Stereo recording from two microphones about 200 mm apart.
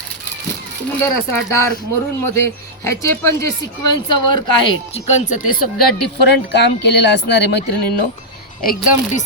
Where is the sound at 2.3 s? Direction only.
15° left (ahead or behind).